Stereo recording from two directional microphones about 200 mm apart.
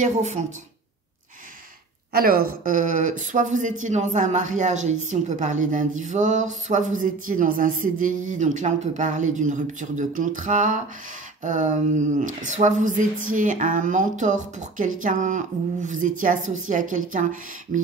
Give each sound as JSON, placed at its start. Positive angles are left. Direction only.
{"t": 0.0, "sound": "speech", "side_deg": -35}
{"t": 2.1, "sound": "a woman's voice", "side_deg": -45}